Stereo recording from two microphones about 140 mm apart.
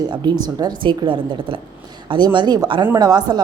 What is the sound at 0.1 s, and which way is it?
Speech, 30° right (ahead or behind).